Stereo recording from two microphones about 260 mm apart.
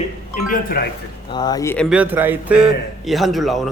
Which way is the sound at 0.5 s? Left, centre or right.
Left.